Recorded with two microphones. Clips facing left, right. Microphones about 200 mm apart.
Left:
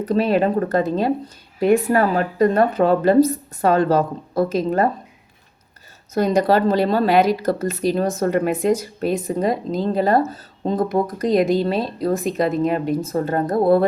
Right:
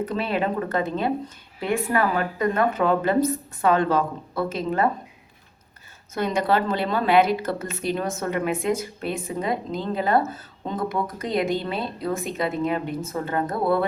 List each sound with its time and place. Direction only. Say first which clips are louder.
0.0 s speech: left 7 dB; 40° left (ahead or behind)
6.1 s speech: left 6 dB; 40° left (ahead or behind)